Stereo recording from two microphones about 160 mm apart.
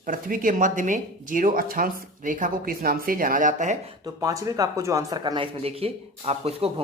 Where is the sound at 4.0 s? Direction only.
20° right (ahead or behind).